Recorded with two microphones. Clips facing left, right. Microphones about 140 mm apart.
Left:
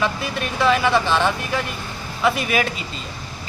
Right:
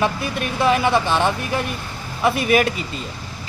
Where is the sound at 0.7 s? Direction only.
15° right (ahead or behind).